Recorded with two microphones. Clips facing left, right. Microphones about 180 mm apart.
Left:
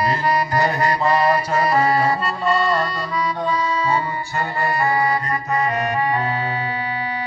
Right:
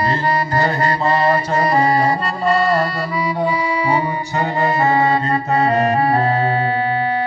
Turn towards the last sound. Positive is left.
turn(degrees=-40)  # may be behind; listen again after turning